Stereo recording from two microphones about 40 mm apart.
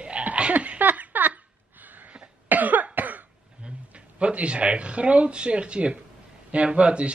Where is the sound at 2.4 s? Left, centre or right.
Right.